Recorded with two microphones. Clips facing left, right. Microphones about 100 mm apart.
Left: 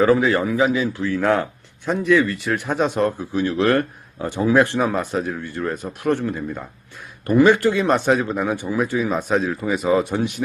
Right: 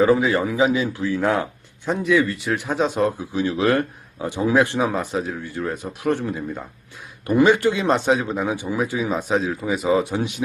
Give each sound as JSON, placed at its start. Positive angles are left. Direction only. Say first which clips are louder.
{"t": 0.0, "sound": "a man's voice", "louder": "left 1 dB", "side_deg": -20}